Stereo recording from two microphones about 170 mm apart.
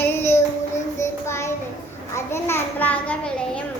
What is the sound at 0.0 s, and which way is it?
Child singing, 15° left (ahead or behind).